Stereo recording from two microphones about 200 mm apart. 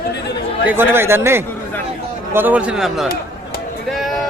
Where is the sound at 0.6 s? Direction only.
10° right (ahead or behind).